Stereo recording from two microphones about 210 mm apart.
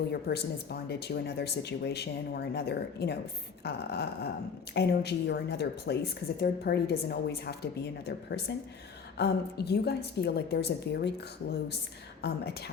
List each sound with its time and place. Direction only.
0.1 s speech: 50° left (ahead or behind)
12.2 s speech: 50° left (ahead or behind)